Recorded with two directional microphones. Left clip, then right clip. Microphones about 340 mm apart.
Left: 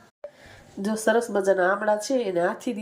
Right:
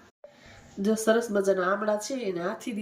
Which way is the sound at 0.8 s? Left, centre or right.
Centre.